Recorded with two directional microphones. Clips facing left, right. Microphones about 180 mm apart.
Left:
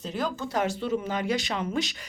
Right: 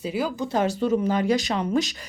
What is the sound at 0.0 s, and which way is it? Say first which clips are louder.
Speech: right 4 dB; 10° right (ahead or behind).